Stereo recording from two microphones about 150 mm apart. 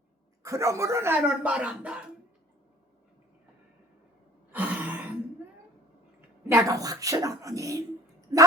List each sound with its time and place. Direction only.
0.4 s a woman's voice: 20° right (ahead or behind)
4.5 s gasp: 10° right (ahead or behind)
6.5 s a woman's voice: 25° right (ahead or behind)